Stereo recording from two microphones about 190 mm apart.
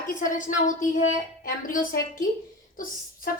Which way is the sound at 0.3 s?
40° left (ahead or behind).